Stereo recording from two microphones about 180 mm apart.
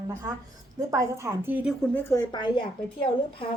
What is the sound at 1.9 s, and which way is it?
Speech, 15° left (ahead or behind).